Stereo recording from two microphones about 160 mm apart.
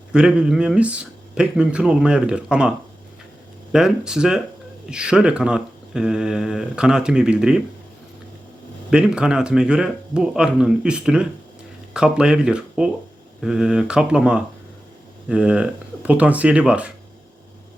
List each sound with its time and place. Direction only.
0.1 s speech: 5° right (ahead or behind)
8.9 s speech: 5° right (ahead or behind)